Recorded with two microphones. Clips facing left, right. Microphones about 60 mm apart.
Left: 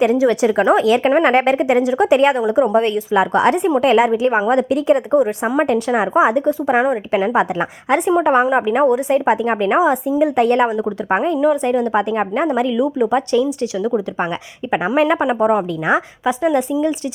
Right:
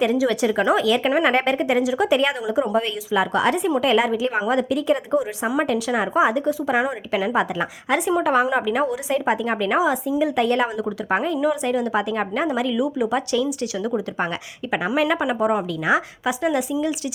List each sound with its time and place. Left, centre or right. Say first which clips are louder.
0.0 s a woman's voice: left 5 dB; left
5.5 s a woman's voice: left 5 dB; left
7.3 s a woman's voice: left 5 dB; left
8.2 s a woman's voice: left 5 dB; left
8.8 s a woman's voice: left 7 dB; left
9.4 s a woman's voice: left 5 dB; left
10.7 s a woman's voice: left 5 dB; left
12.7 s speech: left 5 dB; left
14.7 s a woman's voice: left 5 dB; left
16.2 s speech: left 5 dB; left